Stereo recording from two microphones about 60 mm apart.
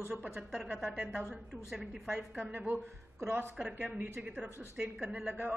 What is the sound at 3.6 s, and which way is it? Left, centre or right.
Speech, right.